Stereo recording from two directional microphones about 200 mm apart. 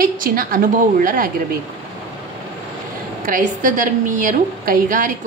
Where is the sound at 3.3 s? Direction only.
40° right (ahead or behind).